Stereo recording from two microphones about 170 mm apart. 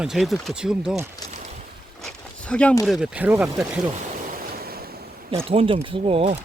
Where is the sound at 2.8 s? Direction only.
Centre (ahead or behind).